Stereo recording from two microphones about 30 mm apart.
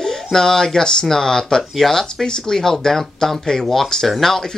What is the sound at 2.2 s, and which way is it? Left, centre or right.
Speech, left.